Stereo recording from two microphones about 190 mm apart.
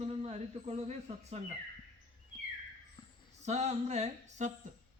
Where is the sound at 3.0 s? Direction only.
20° left (ahead or behind).